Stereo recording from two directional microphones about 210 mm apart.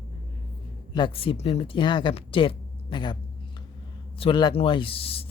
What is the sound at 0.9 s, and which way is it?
Speech, 25° left (ahead or behind).